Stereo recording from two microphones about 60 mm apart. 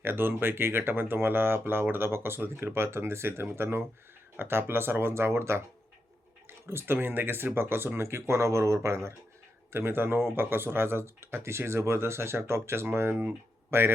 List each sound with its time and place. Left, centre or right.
0.0 s speech: right
9.7 s speech: right